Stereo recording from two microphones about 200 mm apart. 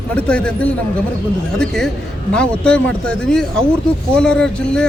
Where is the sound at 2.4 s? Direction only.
5° left (ahead or behind).